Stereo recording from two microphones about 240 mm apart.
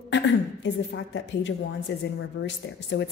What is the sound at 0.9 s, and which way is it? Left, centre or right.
A woman's voice, left.